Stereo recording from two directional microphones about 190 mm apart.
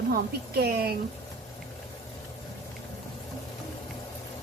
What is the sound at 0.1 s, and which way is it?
Speech, 55° right (ahead or behind).